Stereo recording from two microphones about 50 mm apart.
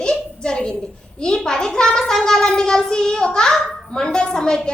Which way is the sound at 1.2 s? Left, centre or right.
Centre.